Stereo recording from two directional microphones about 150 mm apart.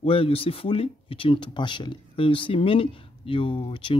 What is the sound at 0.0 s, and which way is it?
Speech, 40° left (ahead or behind).